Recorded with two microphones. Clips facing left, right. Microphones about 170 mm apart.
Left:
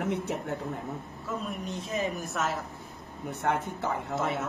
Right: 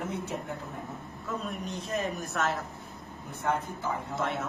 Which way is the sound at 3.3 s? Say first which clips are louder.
Left 1 dB; 70° left (ahead or behind).